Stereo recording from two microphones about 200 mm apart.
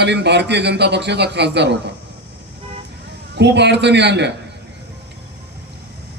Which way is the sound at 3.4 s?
60° right (ahead or behind).